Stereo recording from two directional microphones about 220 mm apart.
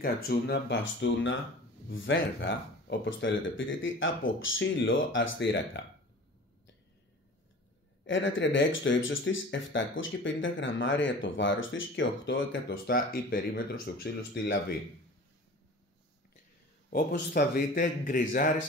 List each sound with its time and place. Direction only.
0.0 s speech: 45° left (ahead or behind)
8.1 s speech: 60° left (ahead or behind)
16.9 s speech: 45° left (ahead or behind)